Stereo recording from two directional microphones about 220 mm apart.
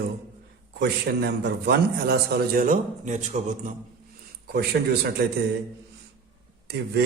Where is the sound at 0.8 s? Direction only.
45° right (ahead or behind).